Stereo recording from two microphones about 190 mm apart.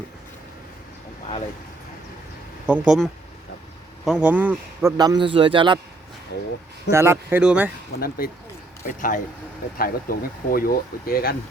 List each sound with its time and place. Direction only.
2.6 s a man's voice: 5° right (ahead or behind); by 5.8 s 25° right (ahead or behind)
6.9 s speech: 15° right (ahead or behind)
7.9 s speech: 50° left (ahead or behind)